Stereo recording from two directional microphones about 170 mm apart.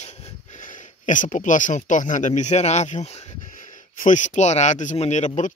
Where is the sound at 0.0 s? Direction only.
40° left (ahead or behind).